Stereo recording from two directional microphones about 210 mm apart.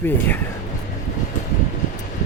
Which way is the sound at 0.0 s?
10° left (ahead or behind).